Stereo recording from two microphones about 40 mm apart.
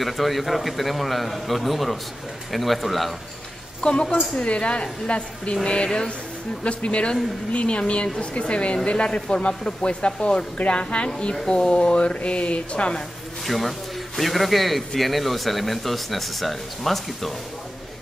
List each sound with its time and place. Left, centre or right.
0.0 s speech: centre
3.8 s speech: left
13.5 s speech: centre